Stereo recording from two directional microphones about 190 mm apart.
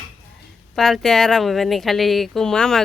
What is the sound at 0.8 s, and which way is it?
Speech, centre (ahead or behind).